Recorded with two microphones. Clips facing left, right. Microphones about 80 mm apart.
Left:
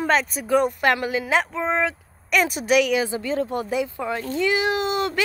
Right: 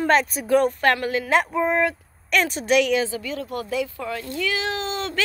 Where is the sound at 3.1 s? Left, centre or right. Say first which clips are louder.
Left 5 dB; left.